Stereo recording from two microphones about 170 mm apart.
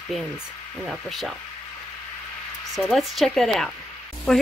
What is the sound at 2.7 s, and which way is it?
Speech, centre (ahead or behind).